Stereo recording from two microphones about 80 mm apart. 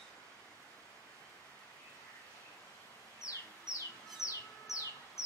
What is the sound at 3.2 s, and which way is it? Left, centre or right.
Chicken, left.